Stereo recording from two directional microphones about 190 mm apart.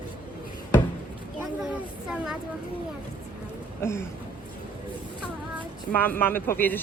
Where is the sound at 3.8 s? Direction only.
15° left (ahead or behind).